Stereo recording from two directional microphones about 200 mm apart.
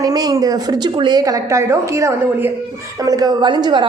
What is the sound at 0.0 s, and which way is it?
A woman's voice, 20° right (ahead or behind).